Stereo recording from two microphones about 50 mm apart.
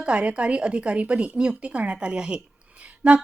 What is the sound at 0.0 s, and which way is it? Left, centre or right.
Speech, right.